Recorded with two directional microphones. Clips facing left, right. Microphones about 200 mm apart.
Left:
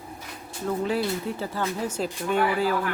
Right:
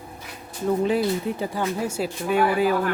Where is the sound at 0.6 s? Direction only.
20° right (ahead or behind).